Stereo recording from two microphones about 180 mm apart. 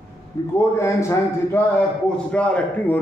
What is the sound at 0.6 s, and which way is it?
A man's voice, 15° left (ahead or behind).